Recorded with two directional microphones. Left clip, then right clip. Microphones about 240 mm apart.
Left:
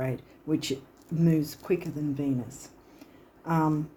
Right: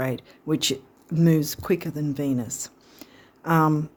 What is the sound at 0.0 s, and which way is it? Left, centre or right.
Speech, right.